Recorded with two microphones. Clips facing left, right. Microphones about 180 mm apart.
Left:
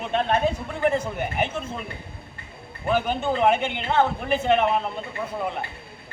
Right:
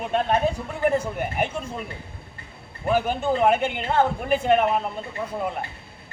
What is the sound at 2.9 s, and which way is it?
Speech, 5° right (ahead or behind).